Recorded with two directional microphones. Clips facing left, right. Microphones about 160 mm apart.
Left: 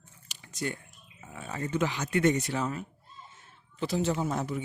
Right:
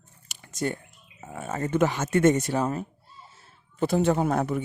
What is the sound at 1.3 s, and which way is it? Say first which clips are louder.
Speech: right 6 dB; 45° right (ahead or behind).